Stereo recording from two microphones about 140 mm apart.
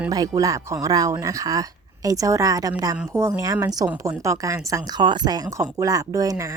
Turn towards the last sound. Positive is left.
turn(degrees=-25)  # may be behind; listen again after turning